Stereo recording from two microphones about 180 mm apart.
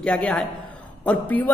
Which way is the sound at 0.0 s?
5° left (ahead or behind).